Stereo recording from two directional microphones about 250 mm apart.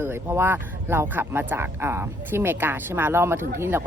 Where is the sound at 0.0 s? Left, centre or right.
Centre.